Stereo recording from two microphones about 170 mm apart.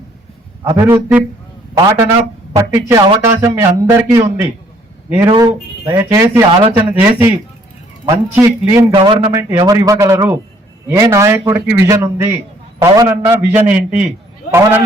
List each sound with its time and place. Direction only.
0.6 s a man's voice: 20° right (ahead or behind)
5.3 s a man's voice: 30° right (ahead or behind)
6.6 s a man's voice: 35° right (ahead or behind)
7.0 s a man's voice: 10° right (ahead or behind)
8.0 s a man's voice: 20° right (ahead or behind)
9.0 s a man's voice: 30° right (ahead or behind)
9.3 s a man's voice: 20° right (ahead or behind)